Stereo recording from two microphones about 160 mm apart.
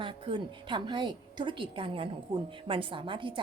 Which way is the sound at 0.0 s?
30° right (ahead or behind).